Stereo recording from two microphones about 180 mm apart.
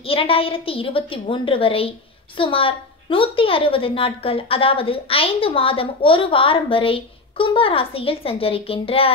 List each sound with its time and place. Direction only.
0.0 s a woman's voice: 30° left (ahead or behind)